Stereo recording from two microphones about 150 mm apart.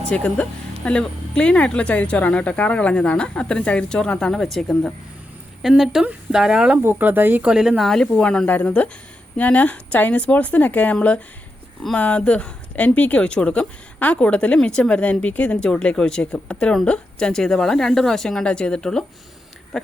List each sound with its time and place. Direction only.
0.0 s a woman's voice: 5° left (ahead or behind)